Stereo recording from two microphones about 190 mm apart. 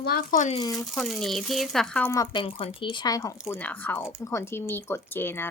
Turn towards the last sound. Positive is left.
turn(degrees=10)  # may be behind; listen again after turning